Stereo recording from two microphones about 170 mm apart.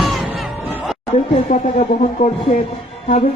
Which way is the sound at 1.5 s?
55° left (ahead or behind).